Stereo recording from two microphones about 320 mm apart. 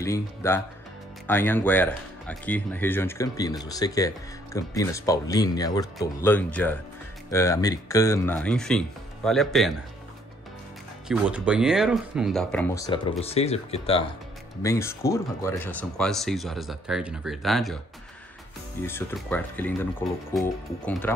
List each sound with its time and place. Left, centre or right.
0.0 s speech: centre
11.1 s speech: centre
18.9 s speech: centre